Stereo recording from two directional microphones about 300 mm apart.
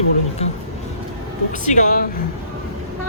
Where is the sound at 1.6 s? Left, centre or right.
Left.